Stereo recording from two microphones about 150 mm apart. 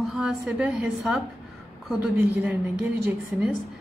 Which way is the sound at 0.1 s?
5° right (ahead or behind).